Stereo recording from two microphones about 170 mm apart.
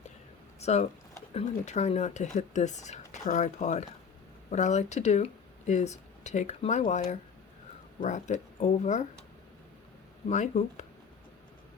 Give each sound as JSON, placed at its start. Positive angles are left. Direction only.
{"t": 0.6, "sound": "speech", "side_deg": 40}
{"t": 10.2, "sound": "speech", "side_deg": 45}